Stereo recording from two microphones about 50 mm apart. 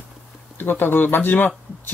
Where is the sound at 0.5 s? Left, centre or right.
Left.